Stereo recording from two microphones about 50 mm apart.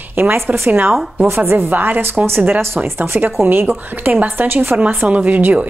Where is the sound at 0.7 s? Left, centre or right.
Right.